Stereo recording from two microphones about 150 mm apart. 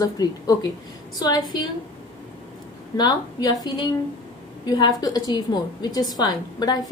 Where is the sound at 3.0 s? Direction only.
25° left (ahead or behind).